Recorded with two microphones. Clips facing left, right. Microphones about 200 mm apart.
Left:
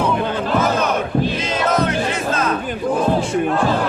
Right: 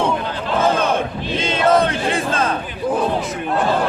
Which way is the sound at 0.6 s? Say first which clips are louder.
Right 1 dB; 30° right (ahead or behind).